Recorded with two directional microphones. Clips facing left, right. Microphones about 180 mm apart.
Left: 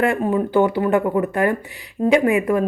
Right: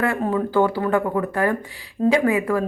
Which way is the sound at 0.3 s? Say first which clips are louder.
Left 1 dB; 20° left (ahead or behind).